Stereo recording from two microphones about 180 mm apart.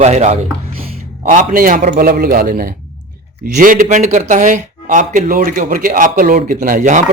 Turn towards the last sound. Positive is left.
turn(degrees=-45)  # may be behind; listen again after turning